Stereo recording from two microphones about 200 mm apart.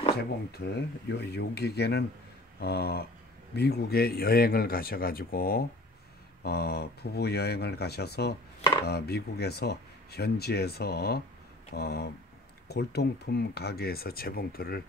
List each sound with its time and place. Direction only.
0.5 s speech: 55° left (ahead or behind)